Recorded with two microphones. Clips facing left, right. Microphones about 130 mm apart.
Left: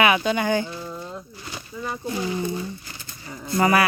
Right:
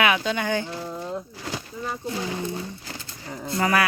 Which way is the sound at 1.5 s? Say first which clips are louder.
Right 5 dB; 90° right.